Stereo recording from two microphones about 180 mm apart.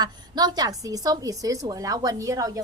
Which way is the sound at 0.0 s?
20° right (ahead or behind).